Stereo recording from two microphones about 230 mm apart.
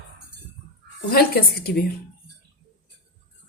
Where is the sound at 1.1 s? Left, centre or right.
Left.